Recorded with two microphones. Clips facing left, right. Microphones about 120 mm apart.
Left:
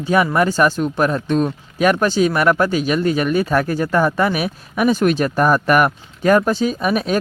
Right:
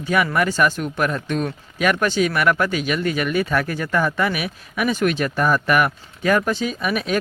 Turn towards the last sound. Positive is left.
turn(degrees=40)  # may be behind; listen again after turning